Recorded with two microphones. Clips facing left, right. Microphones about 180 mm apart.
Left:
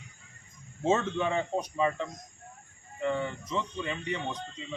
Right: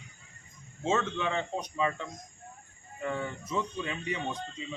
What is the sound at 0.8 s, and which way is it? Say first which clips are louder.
A man's voice: left 3 dB; 15° left (ahead or behind).